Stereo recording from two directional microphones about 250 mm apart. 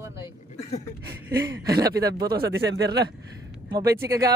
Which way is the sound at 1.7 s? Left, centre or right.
Centre.